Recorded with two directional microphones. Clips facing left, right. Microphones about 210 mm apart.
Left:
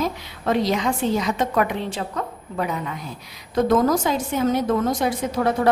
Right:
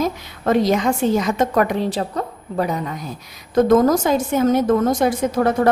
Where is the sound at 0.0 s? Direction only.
45° right (ahead or behind).